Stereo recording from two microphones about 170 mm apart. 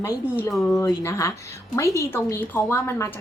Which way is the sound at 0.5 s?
Centre (ahead or behind).